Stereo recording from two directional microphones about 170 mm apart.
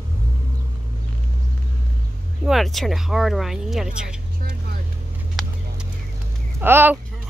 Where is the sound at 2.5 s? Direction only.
Centre (ahead or behind).